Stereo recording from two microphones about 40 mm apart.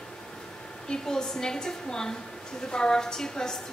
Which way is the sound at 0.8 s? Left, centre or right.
Centre.